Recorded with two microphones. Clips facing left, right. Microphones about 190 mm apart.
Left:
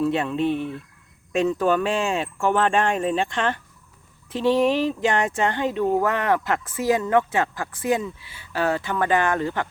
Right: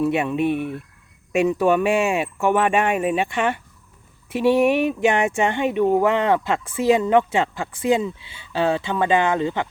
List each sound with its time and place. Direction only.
0.0 s speech: 15° right (ahead or behind)